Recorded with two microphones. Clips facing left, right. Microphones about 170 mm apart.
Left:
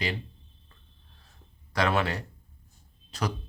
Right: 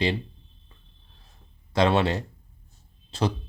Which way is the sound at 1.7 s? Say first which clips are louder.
Right 5 dB; 25° right (ahead or behind).